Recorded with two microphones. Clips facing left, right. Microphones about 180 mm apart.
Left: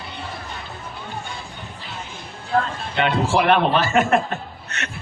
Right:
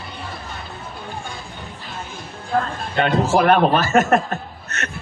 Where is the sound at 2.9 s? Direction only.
45° right (ahead or behind).